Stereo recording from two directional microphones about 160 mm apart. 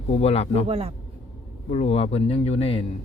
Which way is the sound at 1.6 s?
40° left (ahead or behind).